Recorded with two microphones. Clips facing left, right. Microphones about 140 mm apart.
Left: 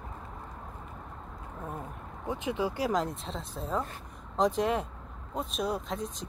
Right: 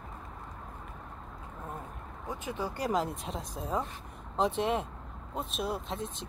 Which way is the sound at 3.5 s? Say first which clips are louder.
Left 1 dB; 10° right (ahead or behind).